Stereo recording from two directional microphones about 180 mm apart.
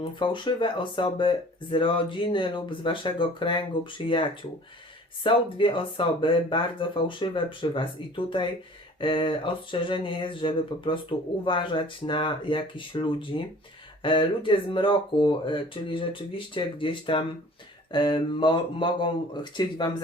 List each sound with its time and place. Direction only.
0.0 s speech: 25° left (ahead or behind)